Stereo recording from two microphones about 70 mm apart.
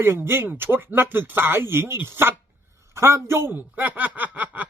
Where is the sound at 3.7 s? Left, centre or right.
Right.